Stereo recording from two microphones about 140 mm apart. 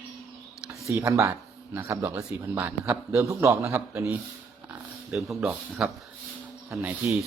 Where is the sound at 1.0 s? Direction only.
20° right (ahead or behind).